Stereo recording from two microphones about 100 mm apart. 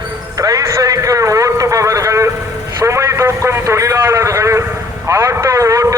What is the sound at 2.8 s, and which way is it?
Vehicle, 30° right (ahead or behind).